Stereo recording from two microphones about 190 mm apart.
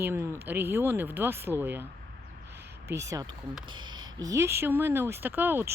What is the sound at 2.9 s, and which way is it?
Speech, 15° right (ahead or behind).